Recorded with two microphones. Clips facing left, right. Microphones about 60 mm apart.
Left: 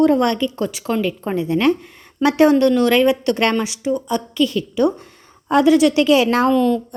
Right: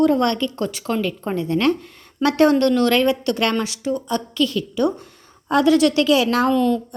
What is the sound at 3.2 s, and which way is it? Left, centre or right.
Speech, left.